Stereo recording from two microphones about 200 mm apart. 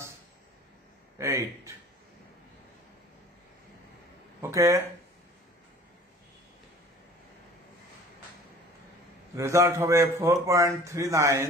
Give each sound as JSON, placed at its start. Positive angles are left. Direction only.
{"t": 1.1, "sound": "a man's voice", "side_deg": -15}
{"t": 4.4, "sound": "speech", "side_deg": -15}
{"t": 9.3, "sound": "a man's voice", "side_deg": -15}